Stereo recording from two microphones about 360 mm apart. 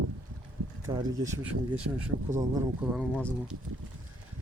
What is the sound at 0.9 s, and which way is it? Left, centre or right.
Speech, centre.